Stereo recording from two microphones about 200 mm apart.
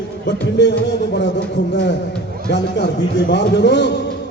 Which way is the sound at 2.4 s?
60° left (ahead or behind).